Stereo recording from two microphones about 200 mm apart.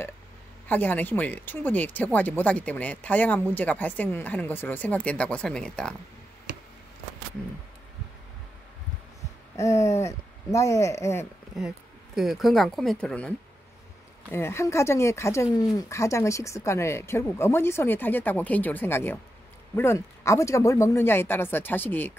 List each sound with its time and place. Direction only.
0.7 s speech: 10° left (ahead or behind)
9.6 s speech: 15° left (ahead or behind)
12.2 s speech: centre (ahead or behind)
14.3 s speech: 10° left (ahead or behind)